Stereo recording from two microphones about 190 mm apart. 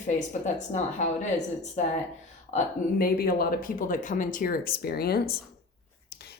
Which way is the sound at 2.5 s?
50° left (ahead or behind).